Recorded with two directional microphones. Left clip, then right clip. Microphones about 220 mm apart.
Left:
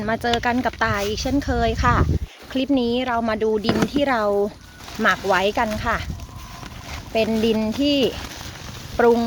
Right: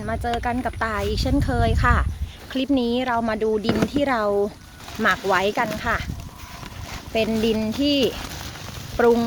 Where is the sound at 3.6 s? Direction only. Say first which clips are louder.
Left 1 dB; 35° left (ahead or behind).